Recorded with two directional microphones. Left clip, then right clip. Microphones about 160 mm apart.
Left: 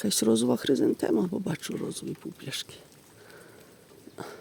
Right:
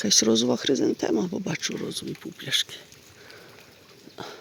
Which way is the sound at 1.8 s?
Centre (ahead or behind).